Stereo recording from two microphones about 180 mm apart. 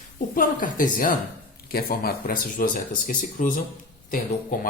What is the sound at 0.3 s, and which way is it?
A woman's voice, 50° left (ahead or behind).